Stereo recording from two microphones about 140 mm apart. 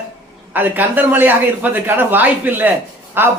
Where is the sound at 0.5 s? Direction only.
15° right (ahead or behind).